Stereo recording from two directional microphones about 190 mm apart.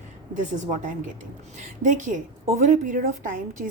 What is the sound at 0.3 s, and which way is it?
A woman's voice, 40° right (ahead or behind).